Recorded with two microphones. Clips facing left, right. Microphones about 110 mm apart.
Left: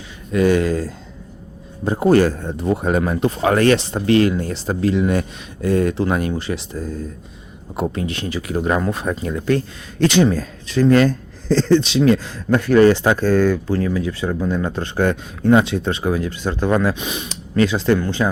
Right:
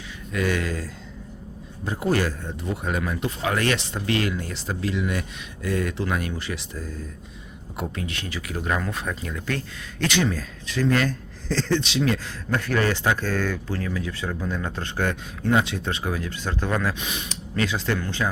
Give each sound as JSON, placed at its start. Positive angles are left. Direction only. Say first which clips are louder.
{"t": 0.3, "sound": "speech", "louder": "left 10 dB", "side_deg": 30}
{"t": 11.4, "sound": "speech", "louder": "left 9 dB", "side_deg": 25}
{"t": 14.9, "sound": "speech", "louder": "left 8 dB", "side_deg": 30}